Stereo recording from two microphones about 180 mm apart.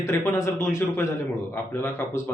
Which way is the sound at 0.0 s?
15° left (ahead or behind).